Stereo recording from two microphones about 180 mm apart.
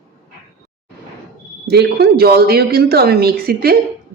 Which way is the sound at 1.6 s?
65° right (ahead or behind).